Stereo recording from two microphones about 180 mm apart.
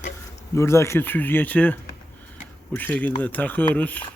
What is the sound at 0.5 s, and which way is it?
Speech, 15° left (ahead or behind).